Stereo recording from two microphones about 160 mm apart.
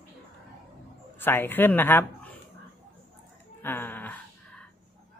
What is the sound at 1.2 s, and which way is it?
Speech, 15° left (ahead or behind).